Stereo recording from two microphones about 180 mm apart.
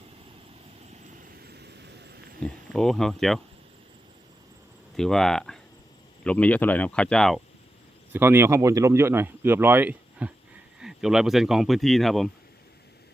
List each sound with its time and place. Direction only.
1.4 s vehicle: 65° right (ahead or behind)
2.4 s speech: centre (ahead or behind)
4.9 s speech: centre (ahead or behind)
8.1 s speech: 10° right (ahead or behind)